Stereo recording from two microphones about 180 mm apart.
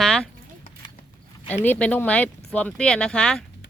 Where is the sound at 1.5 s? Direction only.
10° left (ahead or behind).